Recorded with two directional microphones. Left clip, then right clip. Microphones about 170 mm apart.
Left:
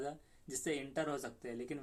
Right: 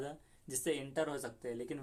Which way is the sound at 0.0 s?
20° right (ahead or behind).